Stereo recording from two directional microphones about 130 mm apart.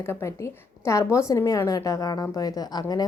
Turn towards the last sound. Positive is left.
turn(degrees=30)  # may be behind; listen again after turning